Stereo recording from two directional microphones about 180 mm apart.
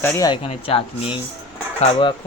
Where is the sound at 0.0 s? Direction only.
10° left (ahead or behind).